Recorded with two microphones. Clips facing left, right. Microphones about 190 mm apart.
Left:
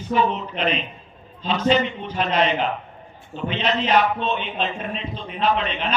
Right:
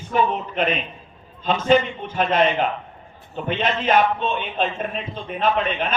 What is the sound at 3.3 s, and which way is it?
A man's voice, 45° right (ahead or behind).